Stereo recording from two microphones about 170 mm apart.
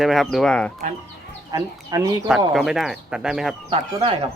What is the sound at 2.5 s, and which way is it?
Speech, centre (ahead or behind).